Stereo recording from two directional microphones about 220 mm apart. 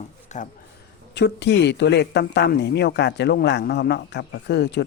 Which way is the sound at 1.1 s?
50° left (ahead or behind).